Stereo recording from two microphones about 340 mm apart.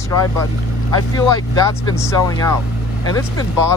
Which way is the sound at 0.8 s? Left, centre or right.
Centre.